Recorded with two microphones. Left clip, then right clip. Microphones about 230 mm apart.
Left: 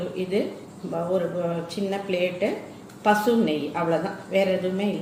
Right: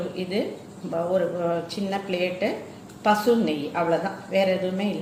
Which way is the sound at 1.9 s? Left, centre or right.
Centre.